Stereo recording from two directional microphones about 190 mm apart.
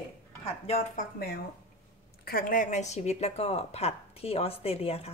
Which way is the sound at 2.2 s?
45° left (ahead or behind).